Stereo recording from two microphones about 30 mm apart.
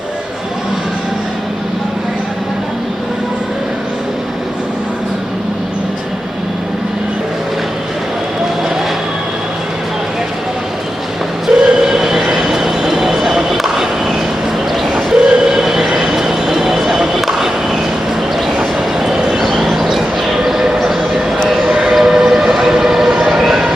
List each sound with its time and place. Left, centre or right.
11.4 s train: centre
14.9 s train: right
15.4 s train: centre
16.0 s vehicle: centre
17.2 s a sound: centre
18.9 s train: centre
19.7 s basketball bounce: centre
20.2 s train: centre
21.8 s train: centre
23.2 s a sound: centre